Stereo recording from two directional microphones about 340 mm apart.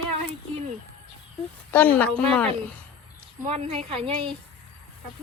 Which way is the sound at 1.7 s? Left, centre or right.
Centre.